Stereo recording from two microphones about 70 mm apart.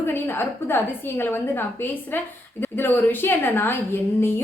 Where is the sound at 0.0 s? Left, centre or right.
Left.